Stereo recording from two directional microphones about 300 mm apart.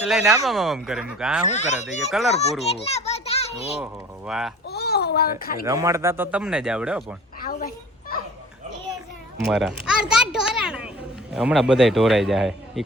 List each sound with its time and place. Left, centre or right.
0.1 s speech: centre
1.5 s speech: left
2.0 s speech: centre
2.3 s a child's voice: left
4.3 s speech: centre
4.7 s babbling: left
5.6 s speech: centre
9.4 s speech: centre